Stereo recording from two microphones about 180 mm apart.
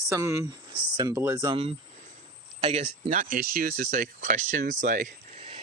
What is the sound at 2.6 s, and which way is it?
Speech, 40° right (ahead or behind).